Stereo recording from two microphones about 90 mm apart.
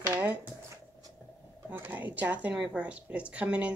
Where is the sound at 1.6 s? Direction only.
20° right (ahead or behind).